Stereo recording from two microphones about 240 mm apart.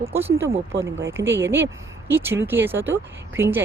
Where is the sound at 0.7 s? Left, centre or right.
Right.